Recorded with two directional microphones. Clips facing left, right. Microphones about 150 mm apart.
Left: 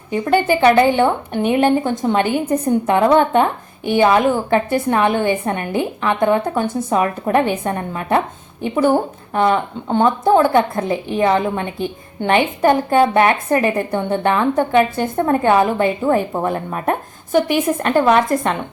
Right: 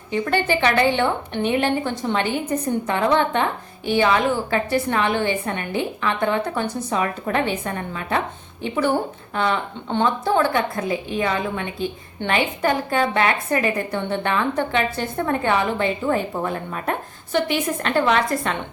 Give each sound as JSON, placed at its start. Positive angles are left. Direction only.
{"t": 0.1, "sound": "a woman's voice", "side_deg": 45}